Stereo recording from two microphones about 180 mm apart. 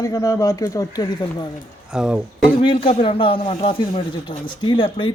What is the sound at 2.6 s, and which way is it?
Speech, 30° left (ahead or behind).